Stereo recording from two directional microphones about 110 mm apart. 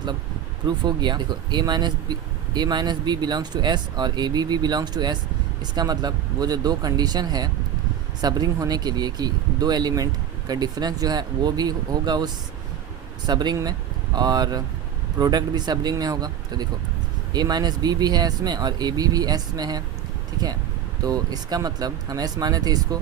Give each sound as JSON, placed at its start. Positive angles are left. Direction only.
{"t": 0.9, "sound": "speech", "side_deg": -40}
{"t": 21.0, "sound": "speech", "side_deg": -35}